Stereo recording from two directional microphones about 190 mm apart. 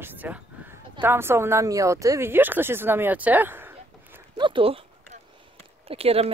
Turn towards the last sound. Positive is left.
turn(degrees=-30)  # may be behind; listen again after turning